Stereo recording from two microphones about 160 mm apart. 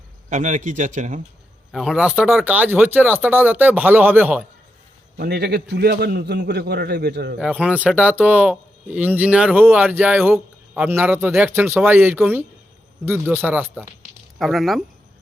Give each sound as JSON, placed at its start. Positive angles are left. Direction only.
{"t": 0.3, "sound": "speech", "side_deg": -50}
{"t": 1.7, "sound": "speech", "side_deg": 0}
{"t": 5.1, "sound": "a man's voice", "side_deg": -90}
{"t": 7.3, "sound": "speech", "side_deg": -5}
{"t": 14.3, "sound": "speech", "side_deg": 0}